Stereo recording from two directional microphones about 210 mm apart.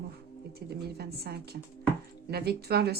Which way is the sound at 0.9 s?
50° right (ahead or behind).